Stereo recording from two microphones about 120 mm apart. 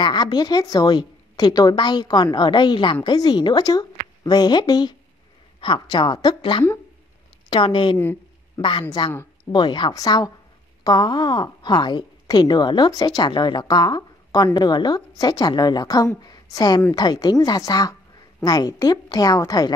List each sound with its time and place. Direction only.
0.0 s speech: 35° left (ahead or behind)
9.1 s a sound: 20° left (ahead or behind)
9.5 s a woman's voice: 40° left (ahead or behind)